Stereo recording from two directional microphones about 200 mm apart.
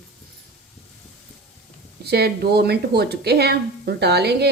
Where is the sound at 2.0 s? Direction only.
55° right (ahead or behind).